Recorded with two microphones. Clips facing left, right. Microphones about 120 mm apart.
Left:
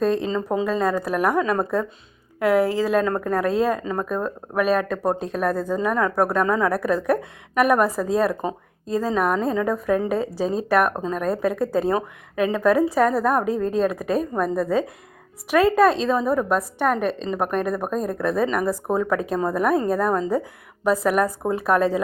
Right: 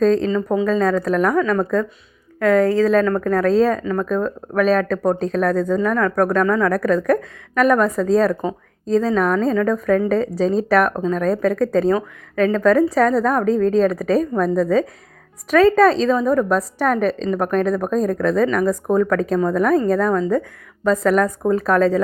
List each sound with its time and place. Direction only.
0.6 s a woman's voice: 5° left (ahead or behind)
1.4 s a woman's voice: 20° left (ahead or behind)
3.3 s a woman's voice: 5° left (ahead or behind)
5.8 s a woman's voice: 15° left (ahead or behind)
6.7 s a woman's voice: 5° left (ahead or behind)
11.9 s a woman's voice: 15° left (ahead or behind)